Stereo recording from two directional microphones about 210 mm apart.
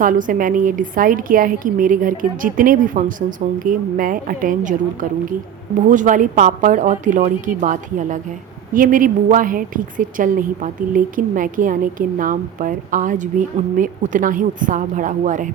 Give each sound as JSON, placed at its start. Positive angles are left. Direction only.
{"t": 0.0, "sound": "a woman's voice", "side_deg": -40}